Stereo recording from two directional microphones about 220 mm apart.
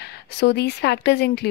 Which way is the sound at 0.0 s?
50° left (ahead or behind).